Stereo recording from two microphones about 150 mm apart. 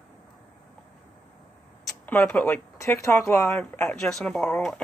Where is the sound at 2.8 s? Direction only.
15° left (ahead or behind).